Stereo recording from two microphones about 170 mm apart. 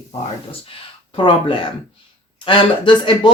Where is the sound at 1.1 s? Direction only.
30° left (ahead or behind).